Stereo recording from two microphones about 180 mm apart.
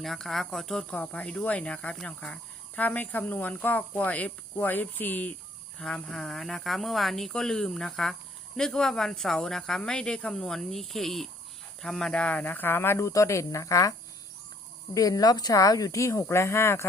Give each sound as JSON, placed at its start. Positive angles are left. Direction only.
{"t": 0.0, "sound": "speech", "side_deg": 0}
{"t": 14.9, "sound": "speech", "side_deg": 20}